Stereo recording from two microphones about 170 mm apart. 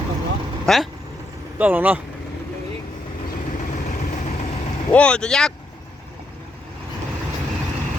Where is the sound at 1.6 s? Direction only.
10° right (ahead or behind).